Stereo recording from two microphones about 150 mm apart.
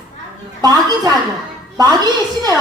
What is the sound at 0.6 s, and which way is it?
A woman's voice, 25° right (ahead or behind).